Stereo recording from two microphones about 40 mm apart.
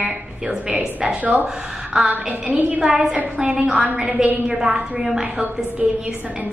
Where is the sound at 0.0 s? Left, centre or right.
Right.